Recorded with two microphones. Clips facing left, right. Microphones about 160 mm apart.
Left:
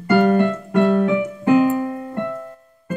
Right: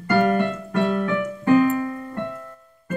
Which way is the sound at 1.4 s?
15° left (ahead or behind).